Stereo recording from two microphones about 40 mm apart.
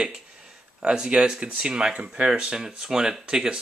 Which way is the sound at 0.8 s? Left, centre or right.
Centre.